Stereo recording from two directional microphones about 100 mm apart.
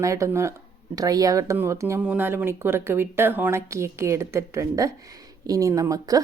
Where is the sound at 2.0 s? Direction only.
15° right (ahead or behind).